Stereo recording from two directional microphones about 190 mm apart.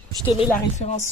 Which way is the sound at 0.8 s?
35° left (ahead or behind).